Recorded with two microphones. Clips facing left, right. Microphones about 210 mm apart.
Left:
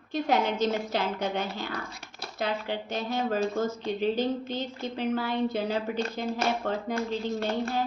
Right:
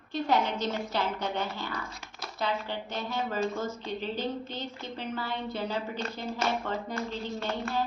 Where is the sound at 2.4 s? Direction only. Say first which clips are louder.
Left 2 dB; 50° left (ahead or behind).